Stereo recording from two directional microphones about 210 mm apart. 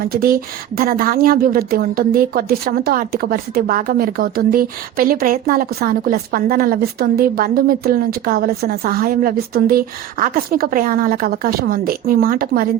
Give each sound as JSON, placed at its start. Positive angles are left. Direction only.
{"t": 0.0, "sound": "a woman's voice", "side_deg": -45}